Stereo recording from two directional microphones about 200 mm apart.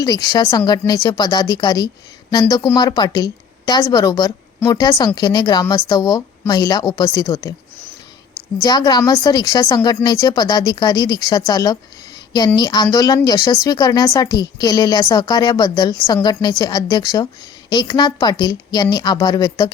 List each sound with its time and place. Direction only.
0.0 s a woman's voice: 20° left (ahead or behind)
8.6 s a woman's voice: 20° left (ahead or behind)